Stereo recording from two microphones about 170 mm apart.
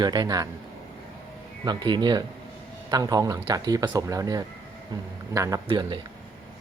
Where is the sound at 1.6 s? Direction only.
25° right (ahead or behind).